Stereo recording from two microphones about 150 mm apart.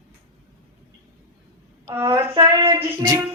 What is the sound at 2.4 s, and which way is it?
Speech, 30° right (ahead or behind).